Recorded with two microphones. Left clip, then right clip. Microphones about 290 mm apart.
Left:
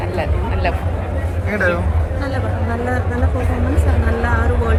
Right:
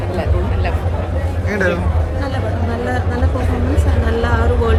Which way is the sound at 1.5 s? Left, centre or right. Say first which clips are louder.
Even; centre.